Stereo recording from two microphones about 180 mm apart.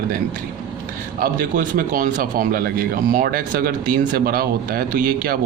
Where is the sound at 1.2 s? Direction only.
50° right (ahead or behind).